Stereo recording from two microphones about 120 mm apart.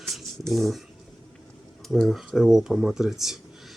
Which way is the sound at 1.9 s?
Centre (ahead or behind).